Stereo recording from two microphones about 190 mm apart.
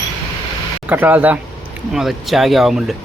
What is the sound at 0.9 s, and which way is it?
Speech, 10° right (ahead or behind).